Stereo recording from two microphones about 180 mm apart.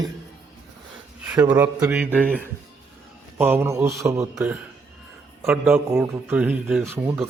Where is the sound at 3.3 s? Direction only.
10° right (ahead or behind).